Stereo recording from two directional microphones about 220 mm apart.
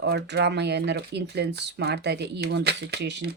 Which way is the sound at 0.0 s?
50° right (ahead or behind).